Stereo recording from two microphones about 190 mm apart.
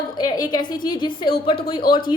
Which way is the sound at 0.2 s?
20° left (ahead or behind).